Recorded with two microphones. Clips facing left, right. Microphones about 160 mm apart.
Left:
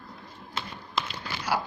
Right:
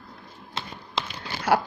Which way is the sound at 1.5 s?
60° right (ahead or behind).